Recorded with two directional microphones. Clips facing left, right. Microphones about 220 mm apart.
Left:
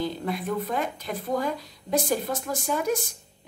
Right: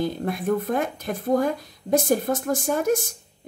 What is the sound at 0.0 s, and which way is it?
Speech, 50° right (ahead or behind).